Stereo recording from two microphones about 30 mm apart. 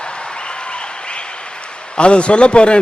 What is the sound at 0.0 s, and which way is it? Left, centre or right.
Applause, left.